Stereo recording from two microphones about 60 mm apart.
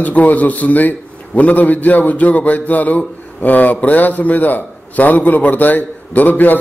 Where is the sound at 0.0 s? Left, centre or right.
Left.